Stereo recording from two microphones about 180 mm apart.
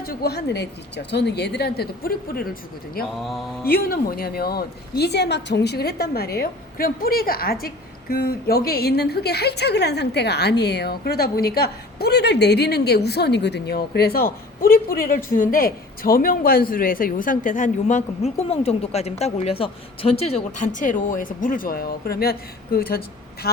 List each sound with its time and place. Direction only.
0.0 s a woman's voice: 60° left (ahead or behind)
3.2 s mantra: centre (ahead or behind)
3.7 s a woman's voice: 55° left (ahead or behind)